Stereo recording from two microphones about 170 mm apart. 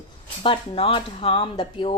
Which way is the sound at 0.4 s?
30° left (ahead or behind).